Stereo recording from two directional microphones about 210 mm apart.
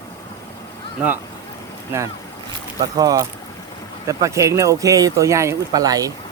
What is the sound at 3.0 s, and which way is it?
Speech, 15° right (ahead or behind).